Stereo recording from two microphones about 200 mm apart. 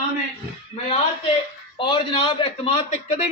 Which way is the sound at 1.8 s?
25° left (ahead or behind).